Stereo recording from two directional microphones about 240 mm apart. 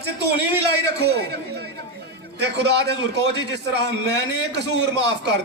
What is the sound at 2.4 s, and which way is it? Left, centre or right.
A man's voice, right.